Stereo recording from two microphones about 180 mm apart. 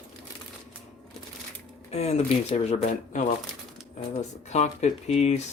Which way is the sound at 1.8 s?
35° left (ahead or behind).